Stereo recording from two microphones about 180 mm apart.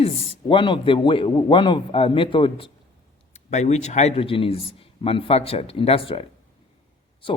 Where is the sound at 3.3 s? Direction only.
40° left (ahead or behind).